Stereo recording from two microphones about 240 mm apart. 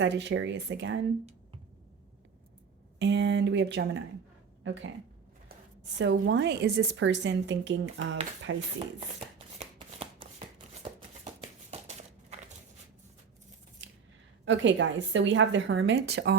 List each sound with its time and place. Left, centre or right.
0.0 s a woman's voice: right
3.0 s a woman's voice: right
6.0 s a woman's voice: right
9.6 s shuffling cards: right
11.7 s a sound: right
13.8 s scissors: right
14.4 s a woman's voice: right